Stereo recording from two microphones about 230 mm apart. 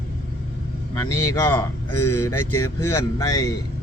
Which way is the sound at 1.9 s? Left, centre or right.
Left.